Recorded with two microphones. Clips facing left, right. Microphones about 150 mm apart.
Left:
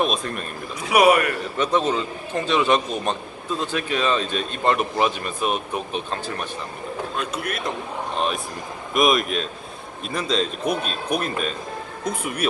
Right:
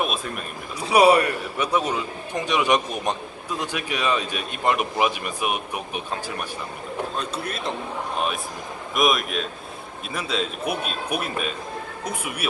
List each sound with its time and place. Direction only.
0.0 s speech: 5° right (ahead or behind)
0.8 s a man's voice: 30° right (ahead or behind)
1.5 s speech: 10° right (ahead or behind)
7.2 s speech: 30° right (ahead or behind)
9.0 s speech: centre (ahead or behind)